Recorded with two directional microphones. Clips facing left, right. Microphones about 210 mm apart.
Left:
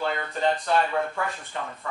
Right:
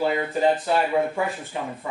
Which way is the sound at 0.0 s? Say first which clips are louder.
Right 5 dB; 5° right (ahead or behind).